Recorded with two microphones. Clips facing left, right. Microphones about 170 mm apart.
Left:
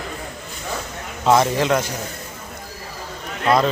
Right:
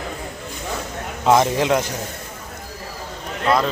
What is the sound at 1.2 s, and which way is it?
Speech, 15° right (ahead or behind).